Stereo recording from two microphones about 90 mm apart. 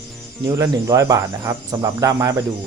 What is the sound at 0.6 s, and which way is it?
Speech, 40° right (ahead or behind).